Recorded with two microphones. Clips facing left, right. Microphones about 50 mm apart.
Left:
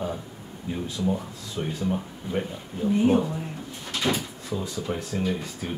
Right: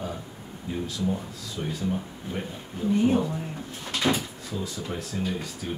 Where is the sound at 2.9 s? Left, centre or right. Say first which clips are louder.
Left 1 dB; centre.